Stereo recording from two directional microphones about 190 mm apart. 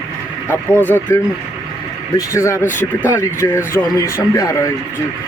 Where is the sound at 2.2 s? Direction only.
15° left (ahead or behind).